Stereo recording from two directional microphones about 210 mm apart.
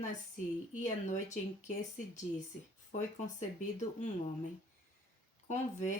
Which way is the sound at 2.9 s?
35° left (ahead or behind).